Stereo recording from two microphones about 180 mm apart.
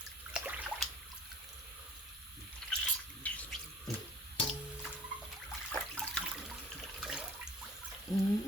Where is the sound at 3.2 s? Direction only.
10° left (ahead or behind).